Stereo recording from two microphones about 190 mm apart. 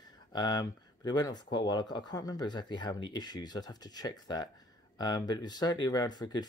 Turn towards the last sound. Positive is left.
turn(degrees=20)  # may be behind; listen again after turning